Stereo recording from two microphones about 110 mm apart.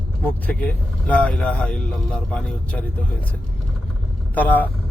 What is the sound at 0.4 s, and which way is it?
Speech, 15° left (ahead or behind).